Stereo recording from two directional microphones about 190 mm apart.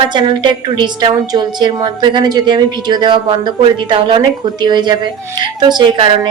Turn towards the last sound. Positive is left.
turn(degrees=-25)  # may be behind; listen again after turning